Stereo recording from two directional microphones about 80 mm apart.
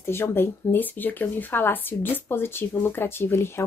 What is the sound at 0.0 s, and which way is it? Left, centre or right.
Speech, left.